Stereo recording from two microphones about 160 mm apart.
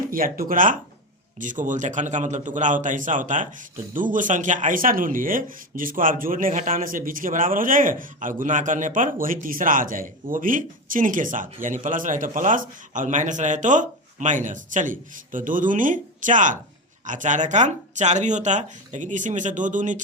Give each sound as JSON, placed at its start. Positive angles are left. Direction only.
{"t": 0.1, "sound": "speech", "side_deg": -60}